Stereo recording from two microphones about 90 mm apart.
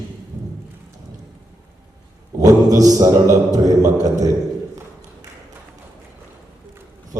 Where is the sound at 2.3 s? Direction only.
40° right (ahead or behind).